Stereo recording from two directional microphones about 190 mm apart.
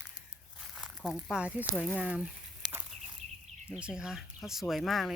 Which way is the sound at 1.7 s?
Centre (ahead or behind).